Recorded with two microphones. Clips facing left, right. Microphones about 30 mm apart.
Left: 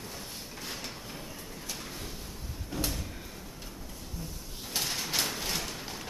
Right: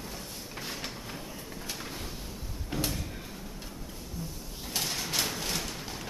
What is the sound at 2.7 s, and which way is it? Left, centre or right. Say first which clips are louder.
Sliding door: right 2 dB; right.